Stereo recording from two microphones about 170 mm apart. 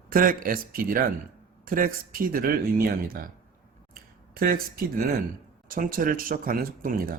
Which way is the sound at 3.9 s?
60° right (ahead or behind).